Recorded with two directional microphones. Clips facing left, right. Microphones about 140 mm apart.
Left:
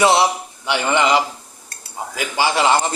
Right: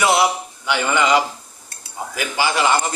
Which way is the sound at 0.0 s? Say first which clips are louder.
Left 2 dB; 25° left (ahead or behind).